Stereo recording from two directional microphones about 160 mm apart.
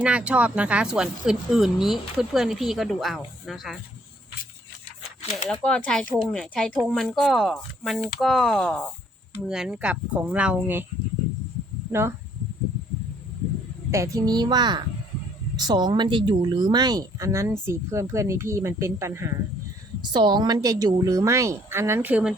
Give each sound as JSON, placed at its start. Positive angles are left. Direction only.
{"t": 0.0, "sound": "speech", "side_deg": -10}
{"t": 5.5, "sound": "speech", "side_deg": 5}
{"t": 11.9, "sound": "speech", "side_deg": -15}
{"t": 13.9, "sound": "speech", "side_deg": -20}
{"t": 20.0, "sound": "speech", "side_deg": -30}